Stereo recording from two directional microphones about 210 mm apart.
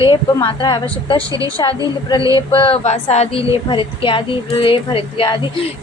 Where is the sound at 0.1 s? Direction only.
20° left (ahead or behind).